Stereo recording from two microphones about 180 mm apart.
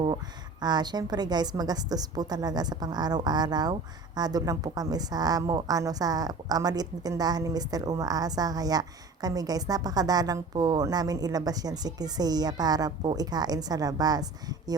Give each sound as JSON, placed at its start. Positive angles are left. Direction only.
{"t": 0.6, "sound": "a woman's voice", "side_deg": -25}